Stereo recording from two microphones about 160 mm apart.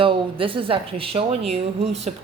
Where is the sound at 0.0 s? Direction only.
35° right (ahead or behind).